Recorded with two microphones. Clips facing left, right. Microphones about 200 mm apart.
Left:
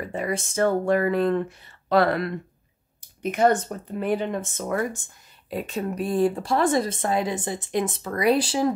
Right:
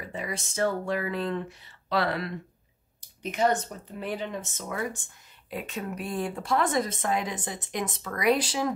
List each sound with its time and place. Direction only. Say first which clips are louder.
0.1 s speech: left 7 dB; 50° left (ahead or behind)
5.5 s speech: left 6 dB; 35° left (ahead or behind)